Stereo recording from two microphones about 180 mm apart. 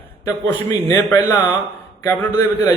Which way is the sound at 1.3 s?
10° left (ahead or behind).